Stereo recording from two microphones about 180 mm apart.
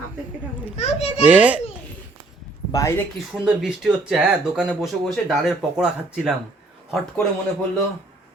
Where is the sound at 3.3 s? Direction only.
5° right (ahead or behind).